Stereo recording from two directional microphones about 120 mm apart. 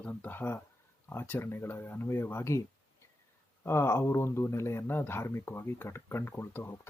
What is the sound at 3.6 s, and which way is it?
Speech, 20° left (ahead or behind).